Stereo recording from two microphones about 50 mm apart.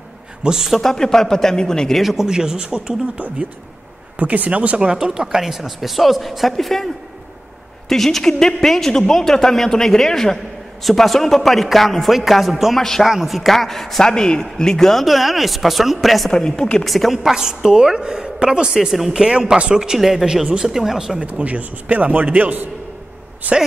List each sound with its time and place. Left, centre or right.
0.4 s a woman's voice: centre
0.7 s a woman's voice: centre
2.0 s a woman's voice: centre
4.2 s a man's voice: right; by 6.9 s centre
7.9 s a woman's voice: centre
16.3 s a woman's voice: centre
16.8 s a woman's voice: centre
19.2 s a woman's voice: centre
21.2 s a man's voice: right